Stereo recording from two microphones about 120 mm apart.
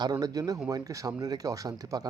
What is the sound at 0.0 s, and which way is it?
Speech, 35° right (ahead or behind).